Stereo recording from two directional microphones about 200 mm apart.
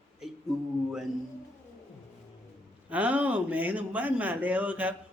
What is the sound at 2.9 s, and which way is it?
Speech, 5° right (ahead or behind).